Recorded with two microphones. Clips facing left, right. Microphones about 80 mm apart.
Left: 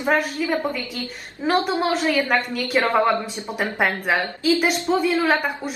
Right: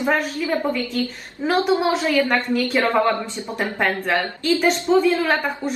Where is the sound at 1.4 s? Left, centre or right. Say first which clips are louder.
Right 1 dB; centre.